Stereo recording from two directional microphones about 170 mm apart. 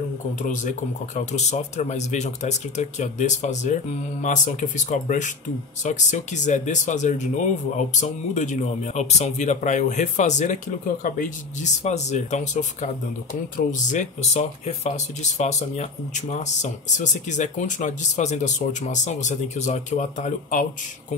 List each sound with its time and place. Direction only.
0.4 s speech: 45° left (ahead or behind)